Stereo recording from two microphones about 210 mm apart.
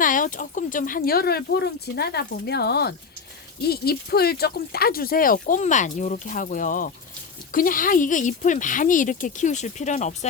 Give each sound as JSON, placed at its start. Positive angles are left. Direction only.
{"t": 0.0, "sound": "speech", "side_deg": 40}